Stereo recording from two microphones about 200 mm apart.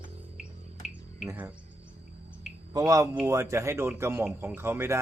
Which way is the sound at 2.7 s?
15° right (ahead or behind).